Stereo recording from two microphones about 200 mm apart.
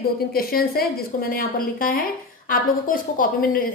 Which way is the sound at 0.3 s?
50° left (ahead or behind).